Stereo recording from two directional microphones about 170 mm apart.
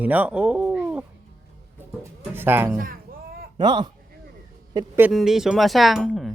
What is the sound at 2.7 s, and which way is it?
Speech, 55° right (ahead or behind).